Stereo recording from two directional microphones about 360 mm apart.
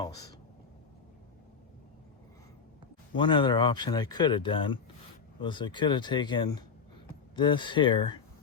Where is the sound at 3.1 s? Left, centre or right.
Centre.